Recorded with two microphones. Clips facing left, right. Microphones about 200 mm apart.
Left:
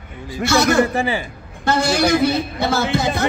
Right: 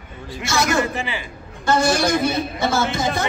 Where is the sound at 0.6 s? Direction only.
40° left (ahead or behind).